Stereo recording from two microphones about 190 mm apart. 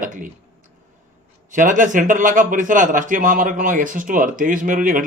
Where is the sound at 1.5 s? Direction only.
45° right (ahead or behind).